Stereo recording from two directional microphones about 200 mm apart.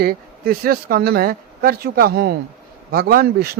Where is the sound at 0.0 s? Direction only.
50° right (ahead or behind).